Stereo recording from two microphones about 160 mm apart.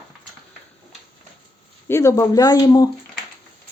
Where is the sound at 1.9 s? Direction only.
20° left (ahead or behind).